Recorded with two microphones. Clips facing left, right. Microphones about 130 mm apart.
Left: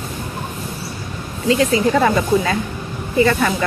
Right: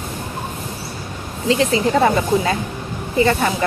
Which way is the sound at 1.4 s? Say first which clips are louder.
Left 1 dB; 25° right (ahead or behind).